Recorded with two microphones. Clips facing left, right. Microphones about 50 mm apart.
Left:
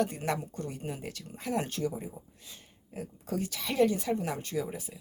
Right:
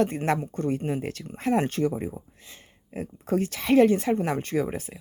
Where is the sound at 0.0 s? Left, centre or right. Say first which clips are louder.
Right 6 dB; right.